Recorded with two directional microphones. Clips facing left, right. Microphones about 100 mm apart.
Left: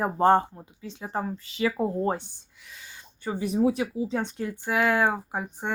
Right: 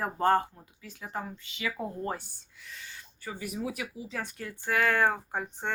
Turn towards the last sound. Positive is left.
turn(degrees=15)  # may be behind; listen again after turning